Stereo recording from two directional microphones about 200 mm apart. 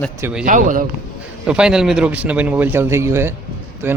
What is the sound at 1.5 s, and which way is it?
Speech, 5° right (ahead or behind).